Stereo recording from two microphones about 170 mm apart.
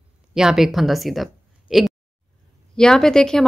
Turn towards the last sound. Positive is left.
turn(degrees=5)  # may be behind; listen again after turning